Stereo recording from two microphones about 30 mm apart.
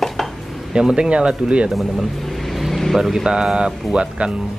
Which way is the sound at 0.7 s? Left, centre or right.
Right.